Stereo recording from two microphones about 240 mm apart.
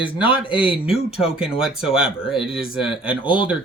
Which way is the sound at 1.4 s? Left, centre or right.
Centre.